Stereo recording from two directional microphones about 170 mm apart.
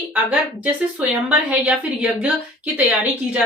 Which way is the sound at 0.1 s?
10° right (ahead or behind).